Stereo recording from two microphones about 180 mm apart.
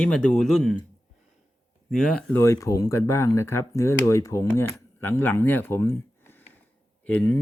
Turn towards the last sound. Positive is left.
turn(degrees=10)  # may be behind; listen again after turning